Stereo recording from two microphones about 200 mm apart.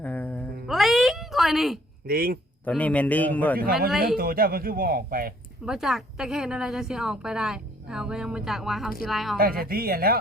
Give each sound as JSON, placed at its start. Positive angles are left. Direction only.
{"t": 0.0, "sound": "a sound", "side_deg": 10}
{"t": 2.0, "sound": "speech", "side_deg": -45}
{"t": 2.6, "sound": "a man's voice", "side_deg": 5}
{"t": 3.6, "sound": "speech", "side_deg": -50}
{"t": 5.6, "sound": "a woman's voice", "side_deg": -5}
{"t": 9.4, "sound": "speech", "side_deg": -45}